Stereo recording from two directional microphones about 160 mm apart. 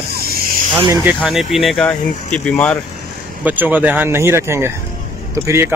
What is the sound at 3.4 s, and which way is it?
Speech, 10° right (ahead or behind).